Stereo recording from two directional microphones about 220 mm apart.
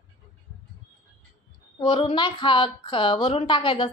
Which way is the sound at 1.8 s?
25° left (ahead or behind).